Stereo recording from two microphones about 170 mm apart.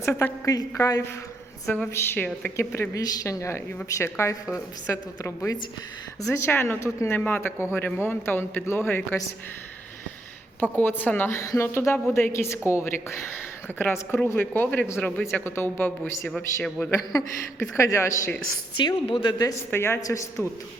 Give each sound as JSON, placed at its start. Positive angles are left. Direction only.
{"t": 0.0, "sound": "speech", "side_deg": 15}
{"t": 1.6, "sound": "a man's voice", "side_deg": 5}
{"t": 10.6, "sound": "a man's voice", "side_deg": 10}
{"t": 16.9, "sound": "a woman's voice", "side_deg": 20}
{"t": 18.8, "sound": "a woman's voice", "side_deg": 30}